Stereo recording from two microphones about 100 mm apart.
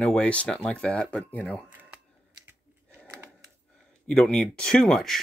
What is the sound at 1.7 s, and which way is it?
Camera, 15° right (ahead or behind).